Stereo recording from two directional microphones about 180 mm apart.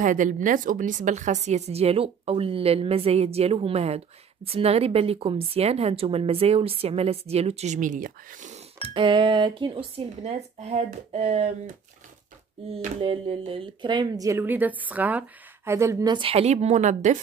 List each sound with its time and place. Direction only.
0.0 s a woman's voice: 45° right (ahead or behind)
12.7 s speech: 30° right (ahead or behind)